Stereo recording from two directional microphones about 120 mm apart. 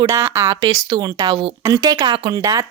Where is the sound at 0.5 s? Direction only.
35° right (ahead or behind).